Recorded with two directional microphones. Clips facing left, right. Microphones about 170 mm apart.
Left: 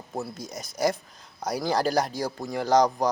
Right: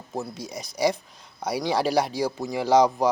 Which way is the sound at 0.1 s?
Centre (ahead or behind).